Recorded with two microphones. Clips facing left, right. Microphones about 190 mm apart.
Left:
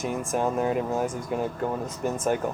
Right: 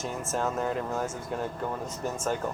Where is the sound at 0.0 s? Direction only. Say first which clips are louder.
Left 4 dB; 15° left (ahead or behind).